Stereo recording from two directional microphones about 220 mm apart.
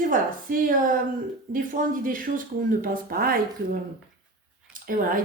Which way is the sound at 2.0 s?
40° right (ahead or behind).